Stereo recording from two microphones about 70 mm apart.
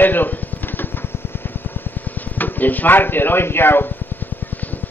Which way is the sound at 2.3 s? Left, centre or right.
Left.